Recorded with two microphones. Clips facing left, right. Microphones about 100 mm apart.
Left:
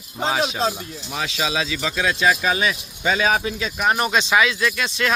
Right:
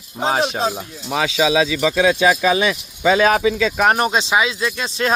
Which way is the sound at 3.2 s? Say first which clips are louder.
Right 5 dB; 65° right (ahead or behind).